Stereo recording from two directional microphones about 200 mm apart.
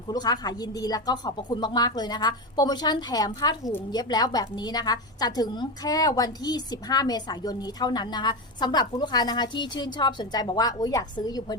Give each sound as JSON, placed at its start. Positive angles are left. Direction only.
{"t": 0.1, "sound": "speech", "side_deg": 20}